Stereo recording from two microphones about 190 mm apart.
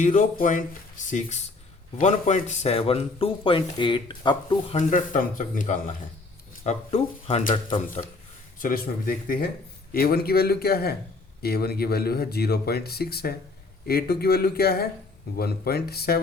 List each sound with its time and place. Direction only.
0.0 s speech: 40° left (ahead or behind); by 4.8 s 25° left (ahead or behind)
4.8 s speech: 40° left (ahead or behind)
8.5 s speech: 45° left (ahead or behind)